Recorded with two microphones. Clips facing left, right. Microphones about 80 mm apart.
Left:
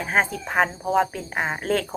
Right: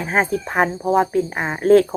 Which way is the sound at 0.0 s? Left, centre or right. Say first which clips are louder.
Right 3 dB; centre.